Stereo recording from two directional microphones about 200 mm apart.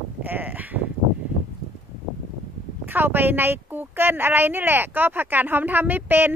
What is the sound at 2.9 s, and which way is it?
Speech, 10° right (ahead or behind).